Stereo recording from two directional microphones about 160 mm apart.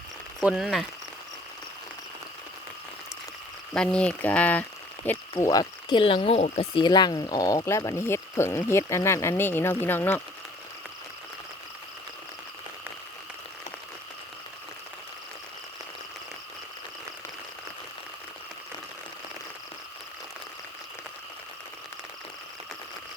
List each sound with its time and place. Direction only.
0.4 s speech: 5° right (ahead or behind)
3.8 s speech: 5° left (ahead or behind)
5.4 s speech: 25° left (ahead or behind)